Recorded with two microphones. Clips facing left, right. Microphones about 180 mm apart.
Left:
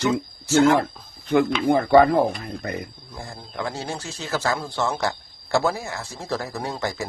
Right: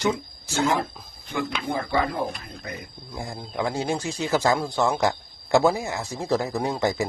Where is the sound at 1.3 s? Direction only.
65° left (ahead or behind).